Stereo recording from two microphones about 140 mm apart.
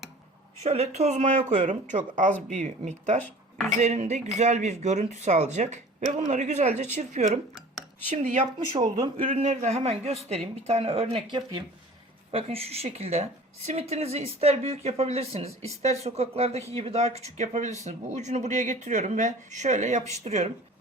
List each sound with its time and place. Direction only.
0.6 s speech: 50° right (ahead or behind)
8.1 s speech: 65° right (ahead or behind)
8.5 s speech: 35° right (ahead or behind)
9.3 s speech: 60° right (ahead or behind); by 11.6 s 35° right (ahead or behind)
12.3 s speech: 45° right (ahead or behind)